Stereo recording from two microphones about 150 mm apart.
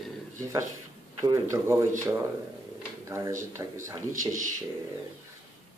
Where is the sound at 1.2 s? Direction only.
25° right (ahead or behind).